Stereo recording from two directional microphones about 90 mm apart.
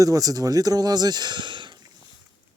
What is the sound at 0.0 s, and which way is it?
Speech, 40° right (ahead or behind).